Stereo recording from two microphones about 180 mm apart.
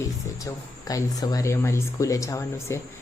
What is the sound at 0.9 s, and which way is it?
Speech, 20° left (ahead or behind).